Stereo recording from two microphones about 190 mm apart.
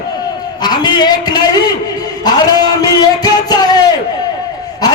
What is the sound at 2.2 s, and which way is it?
Music, 20° left (ahead or behind).